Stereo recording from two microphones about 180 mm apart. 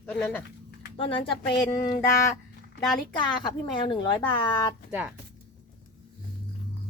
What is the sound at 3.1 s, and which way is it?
A woman's voice, 25° left (ahead or behind).